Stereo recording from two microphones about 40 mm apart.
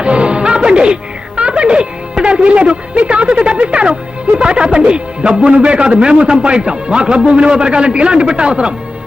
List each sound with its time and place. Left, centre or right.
0.0 s music: right
1.4 s speech: right